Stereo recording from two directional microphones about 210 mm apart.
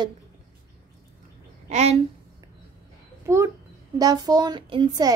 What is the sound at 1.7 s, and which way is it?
Speech, 30° right (ahead or behind).